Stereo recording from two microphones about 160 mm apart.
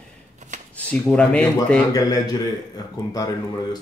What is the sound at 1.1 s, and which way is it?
Speech, 10° left (ahead or behind).